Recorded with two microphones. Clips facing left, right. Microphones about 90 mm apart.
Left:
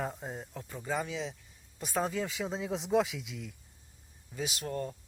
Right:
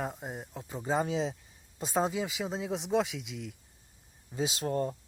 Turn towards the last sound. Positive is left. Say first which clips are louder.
# right 5 dB
turn(degrees=-35)  # may be behind; listen again after turning